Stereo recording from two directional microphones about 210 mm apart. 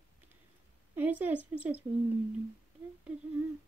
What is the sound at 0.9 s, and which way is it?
Speech, 10° right (ahead or behind).